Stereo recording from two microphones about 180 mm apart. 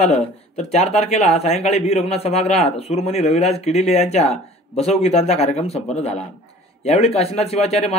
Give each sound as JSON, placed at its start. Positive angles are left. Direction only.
{"t": 0.0, "sound": "a man's voice", "side_deg": 35}